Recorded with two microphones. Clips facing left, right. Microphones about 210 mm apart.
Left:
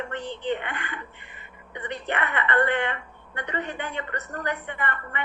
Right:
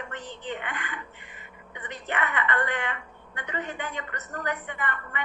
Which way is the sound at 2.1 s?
35° left (ahead or behind).